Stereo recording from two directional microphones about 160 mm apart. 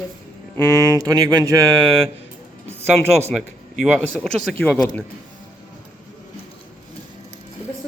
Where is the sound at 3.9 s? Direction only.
5° left (ahead or behind).